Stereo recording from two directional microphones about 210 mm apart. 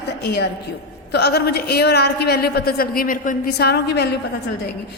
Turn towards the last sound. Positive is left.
turn(degrees=50)  # may be behind; listen again after turning